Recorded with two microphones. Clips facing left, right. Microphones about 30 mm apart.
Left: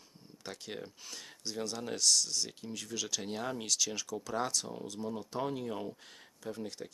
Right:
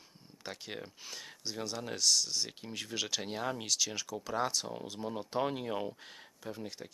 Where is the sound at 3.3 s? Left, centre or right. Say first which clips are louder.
Right 1 dB; centre; by 5.9 s right.